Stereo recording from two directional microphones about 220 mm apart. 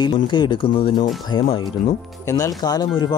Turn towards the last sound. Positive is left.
turn(degrees=20)  # may be behind; listen again after turning